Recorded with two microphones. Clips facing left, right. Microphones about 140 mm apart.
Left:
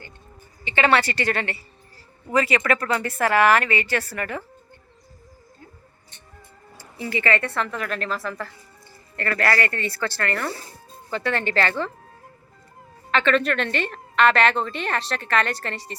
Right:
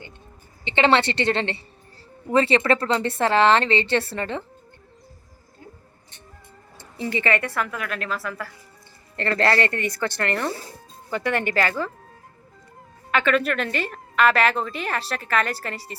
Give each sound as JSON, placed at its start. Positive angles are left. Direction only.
{"t": 0.6, "sound": "a woman's voice", "side_deg": -25}
{"t": 7.1, "sound": "a woman's voice", "side_deg": -20}
{"t": 9.1, "sound": "a woman's voice", "side_deg": -25}
{"t": 13.1, "sound": "a woman's voice", "side_deg": -10}